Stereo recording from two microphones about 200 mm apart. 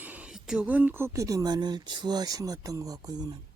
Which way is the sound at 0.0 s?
5° right (ahead or behind).